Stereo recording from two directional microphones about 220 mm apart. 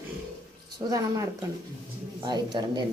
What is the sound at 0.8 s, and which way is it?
Speech, 15° right (ahead or behind).